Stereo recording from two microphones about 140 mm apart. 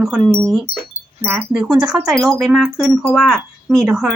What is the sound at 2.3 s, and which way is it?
Wind chime, 5° right (ahead or behind).